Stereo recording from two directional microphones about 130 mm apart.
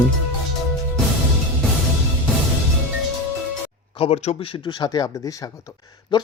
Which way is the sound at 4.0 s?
55° left (ahead or behind).